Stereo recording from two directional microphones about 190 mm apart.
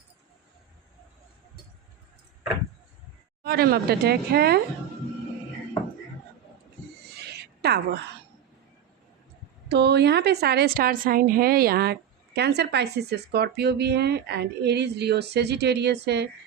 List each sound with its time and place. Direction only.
3.4 s a woman's voice: 55° right (ahead or behind)
7.2 s a sound: 60° right (ahead or behind)
9.6 s a woman's voice: 60° right (ahead or behind)